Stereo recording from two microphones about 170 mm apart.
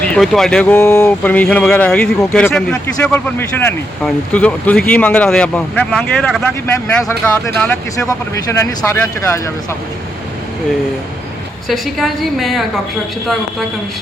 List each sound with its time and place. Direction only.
0.0 s speech: 5° left (ahead or behind)
8.4 s speech: 15° left (ahead or behind)
11.7 s a woman's voice: centre (ahead or behind)